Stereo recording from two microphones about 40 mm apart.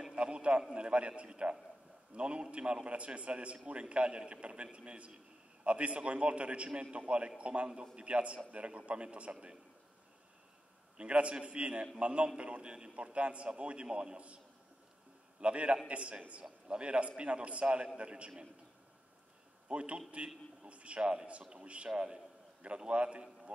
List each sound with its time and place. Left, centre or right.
0.1 s a sound: right
0.7 s a man's voice: right
11.0 s a man's voice: right
15.4 s a man's voice: right
19.7 s a man's voice: right